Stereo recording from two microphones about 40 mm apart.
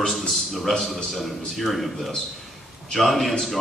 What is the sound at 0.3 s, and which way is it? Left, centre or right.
A man's voice, centre.